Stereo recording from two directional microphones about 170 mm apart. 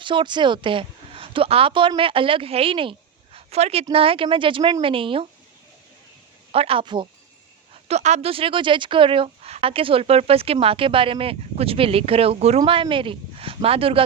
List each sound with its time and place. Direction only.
0.0 s speech: 30° right (ahead or behind)
6.5 s speech: 35° right (ahead or behind)
7.9 s speech: 40° right (ahead or behind)